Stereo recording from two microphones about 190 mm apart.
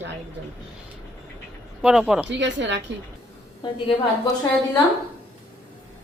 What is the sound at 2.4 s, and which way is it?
Speech, 70° right (ahead or behind).